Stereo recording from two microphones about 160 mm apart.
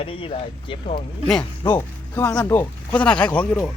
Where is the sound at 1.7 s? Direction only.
20° left (ahead or behind).